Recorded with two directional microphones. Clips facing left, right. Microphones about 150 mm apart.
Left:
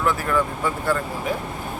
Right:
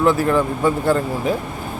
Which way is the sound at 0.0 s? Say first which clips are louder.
Right 6 dB; 30° right (ahead or behind).